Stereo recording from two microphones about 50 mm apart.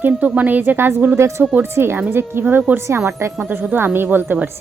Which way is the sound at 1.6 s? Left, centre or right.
Right.